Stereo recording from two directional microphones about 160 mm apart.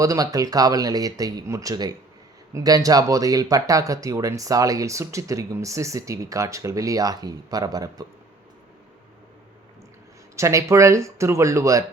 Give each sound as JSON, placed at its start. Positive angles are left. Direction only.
{"t": 0.0, "sound": "speech", "side_deg": -20}
{"t": 10.3, "sound": "speech", "side_deg": -20}